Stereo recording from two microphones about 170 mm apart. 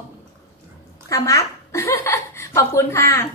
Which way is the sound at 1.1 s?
20° left (ahead or behind).